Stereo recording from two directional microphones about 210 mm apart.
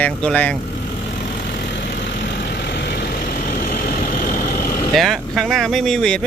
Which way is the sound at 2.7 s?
50° left (ahead or behind).